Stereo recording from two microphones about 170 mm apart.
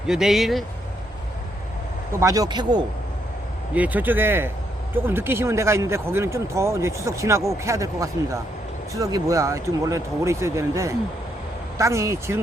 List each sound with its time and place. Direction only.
0.1 s speech: 5° right (ahead or behind)
2.2 s speech: 20° right (ahead or behind)
3.8 s speech: 10° right (ahead or behind)